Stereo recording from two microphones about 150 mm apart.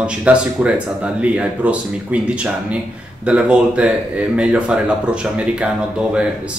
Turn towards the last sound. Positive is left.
turn(degrees=-5)  # may be behind; listen again after turning